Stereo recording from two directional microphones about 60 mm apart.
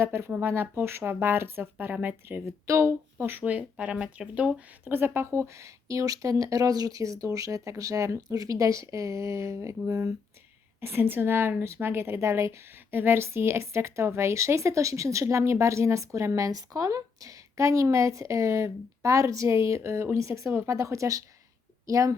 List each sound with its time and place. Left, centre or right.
0.0 s speech: right
2.6 s speech: right
3.2 s speech: right; by 4.6 s centre
4.9 s a woman's voice: right
10.8 s a woman's voice: right